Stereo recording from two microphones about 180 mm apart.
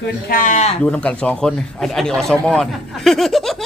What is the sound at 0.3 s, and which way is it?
Speech, 50° left (ahead or behind).